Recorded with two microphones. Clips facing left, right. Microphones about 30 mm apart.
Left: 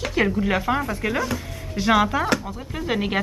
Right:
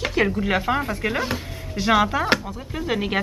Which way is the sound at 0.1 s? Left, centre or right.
Centre.